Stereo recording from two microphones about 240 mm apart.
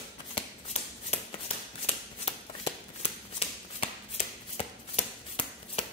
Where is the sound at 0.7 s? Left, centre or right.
Left.